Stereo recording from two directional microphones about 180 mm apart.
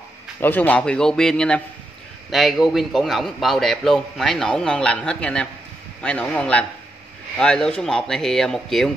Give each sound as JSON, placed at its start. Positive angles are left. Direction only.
{"t": 0.4, "sound": "a man's voice", "side_deg": 10}